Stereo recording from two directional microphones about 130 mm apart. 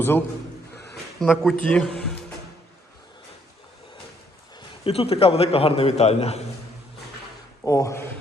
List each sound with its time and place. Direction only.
1.2 s speech: 5° left (ahead or behind)
4.8 s a man's voice: 50° left (ahead or behind)
7.6 s speech: 25° left (ahead or behind)